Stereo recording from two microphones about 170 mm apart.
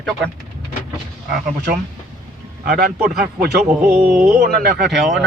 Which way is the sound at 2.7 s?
65° right (ahead or behind).